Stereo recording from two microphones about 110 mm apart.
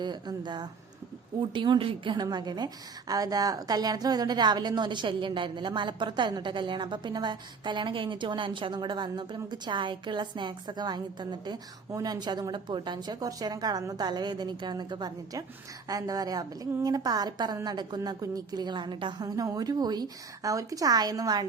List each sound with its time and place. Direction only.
0.0 s a woman's voice: 40° right (ahead or behind)
2.2 s a woman's voice: 40° right (ahead or behind)
19.4 s a woman's voice: 35° right (ahead or behind)